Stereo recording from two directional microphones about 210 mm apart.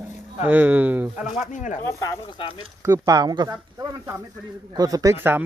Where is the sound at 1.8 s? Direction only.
15° left (ahead or behind).